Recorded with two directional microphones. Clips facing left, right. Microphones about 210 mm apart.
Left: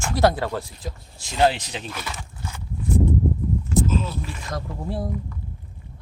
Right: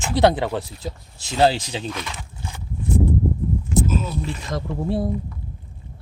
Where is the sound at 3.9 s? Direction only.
15° right (ahead or behind).